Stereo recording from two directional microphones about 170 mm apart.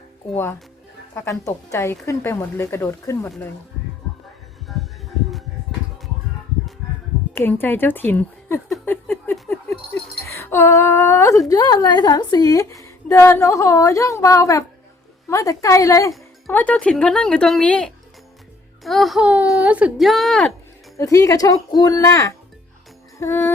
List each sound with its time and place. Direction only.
1.1 s speech: 15° left (ahead or behind)
4.7 s music: centre (ahead or behind)
7.3 s speech: 10° left (ahead or behind)
21.0 s speech: 20° left (ahead or behind)